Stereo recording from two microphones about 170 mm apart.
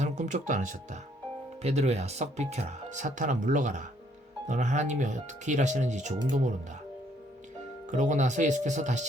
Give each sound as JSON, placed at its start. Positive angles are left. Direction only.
{"t": 0.0, "sound": "speech", "side_deg": -45}
{"t": 7.9, "sound": "speech", "side_deg": -50}